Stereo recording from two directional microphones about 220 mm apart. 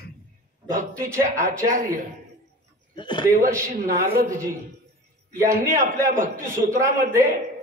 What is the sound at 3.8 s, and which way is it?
Speech, 40° right (ahead or behind).